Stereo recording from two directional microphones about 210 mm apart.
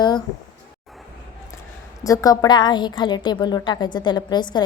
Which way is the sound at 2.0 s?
15° left (ahead or behind).